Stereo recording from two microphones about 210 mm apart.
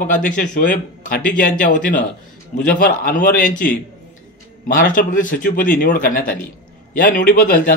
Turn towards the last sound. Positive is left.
turn(degrees=40)  # may be behind; listen again after turning